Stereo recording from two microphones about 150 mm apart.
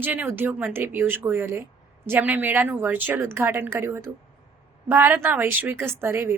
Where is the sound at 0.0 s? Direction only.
10° right (ahead or behind).